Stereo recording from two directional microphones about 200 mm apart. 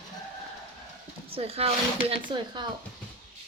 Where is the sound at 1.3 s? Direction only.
30° right (ahead or behind).